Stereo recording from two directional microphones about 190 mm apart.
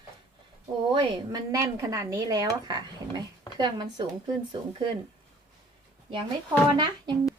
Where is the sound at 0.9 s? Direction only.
20° right (ahead or behind).